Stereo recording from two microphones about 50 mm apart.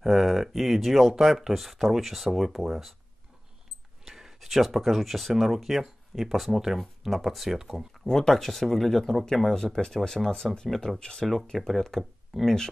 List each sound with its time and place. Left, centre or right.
0.0 s speech: centre
4.0 s speech: centre
11.5 s speech: centre